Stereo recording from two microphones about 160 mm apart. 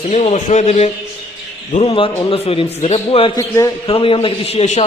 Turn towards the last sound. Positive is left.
turn(degrees=45)  # may be behind; listen again after turning